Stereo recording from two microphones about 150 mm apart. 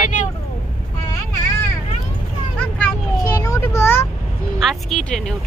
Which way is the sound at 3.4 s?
20° left (ahead or behind).